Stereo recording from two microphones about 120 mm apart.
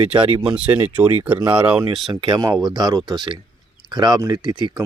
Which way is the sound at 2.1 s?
45° right (ahead or behind).